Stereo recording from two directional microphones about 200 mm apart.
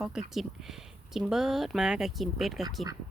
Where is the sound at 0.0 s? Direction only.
Centre (ahead or behind).